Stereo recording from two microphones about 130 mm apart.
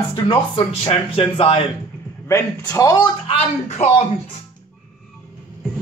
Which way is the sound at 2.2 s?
25° left (ahead or behind).